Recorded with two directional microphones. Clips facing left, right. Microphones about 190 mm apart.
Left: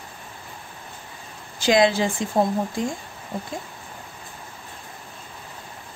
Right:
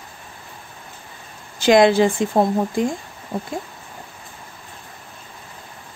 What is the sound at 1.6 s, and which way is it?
Speech, 55° right (ahead or behind).